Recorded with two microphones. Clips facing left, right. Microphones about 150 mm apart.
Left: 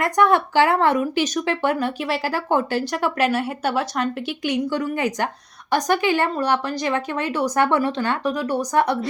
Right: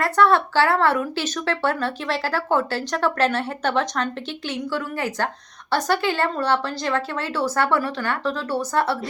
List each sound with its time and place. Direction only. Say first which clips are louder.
0.0 s speech: even; 15° left (ahead or behind)